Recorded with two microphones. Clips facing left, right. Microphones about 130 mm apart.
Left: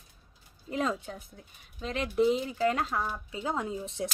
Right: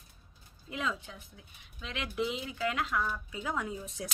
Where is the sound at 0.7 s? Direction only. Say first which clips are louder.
Left 5 dB; 40° left (ahead or behind).